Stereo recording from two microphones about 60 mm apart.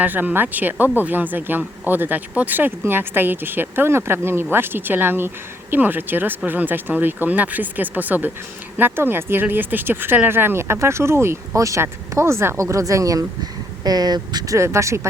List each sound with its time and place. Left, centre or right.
0.0 s speech: right
11.5 s speech: right
11.8 s speech: right
12.5 s speech: right
13.8 s speech: right